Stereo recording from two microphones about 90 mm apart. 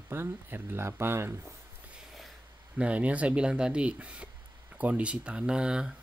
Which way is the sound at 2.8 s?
15° right (ahead or behind).